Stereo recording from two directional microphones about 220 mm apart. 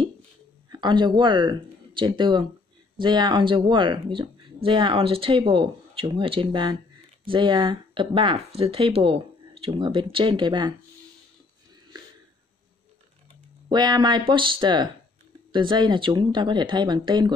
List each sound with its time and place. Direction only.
0.7 s speech: 20° right (ahead or behind)
13.7 s speech: 20° right (ahead or behind)